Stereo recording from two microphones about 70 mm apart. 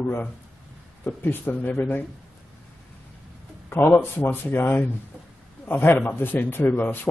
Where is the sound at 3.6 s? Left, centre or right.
Left.